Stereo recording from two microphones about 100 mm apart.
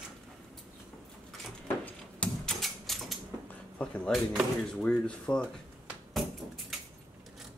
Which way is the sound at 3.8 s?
10° left (ahead or behind).